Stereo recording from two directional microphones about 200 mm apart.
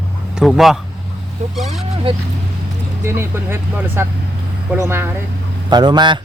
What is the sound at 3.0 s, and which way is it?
A man's voice, 10° right (ahead or behind).